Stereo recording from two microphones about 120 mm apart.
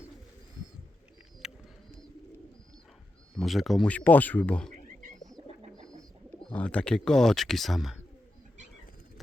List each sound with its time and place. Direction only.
1.4 s bird: 5° right (ahead or behind)
3.3 s speech: centre (ahead or behind)
3.8 s speech: 10° left (ahead or behind)
5.4 s bird: 45° right (ahead or behind)
6.4 s speech: 10° left (ahead or behind)